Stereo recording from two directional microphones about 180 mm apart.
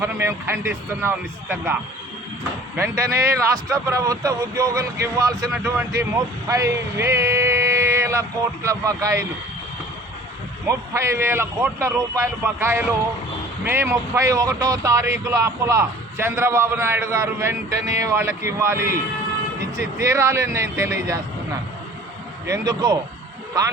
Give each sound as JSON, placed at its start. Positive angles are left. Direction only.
{"t": 0.0, "sound": "speech", "side_deg": -15}
{"t": 10.7, "sound": "speech", "side_deg": -15}
{"t": 20.0, "sound": "speech", "side_deg": -15}
{"t": 22.4, "sound": "speech", "side_deg": -15}